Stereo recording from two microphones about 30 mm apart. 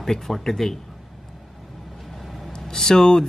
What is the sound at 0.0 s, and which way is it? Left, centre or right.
Speech, centre.